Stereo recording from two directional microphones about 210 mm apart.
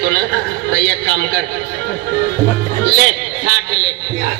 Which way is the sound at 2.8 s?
50° right (ahead or behind).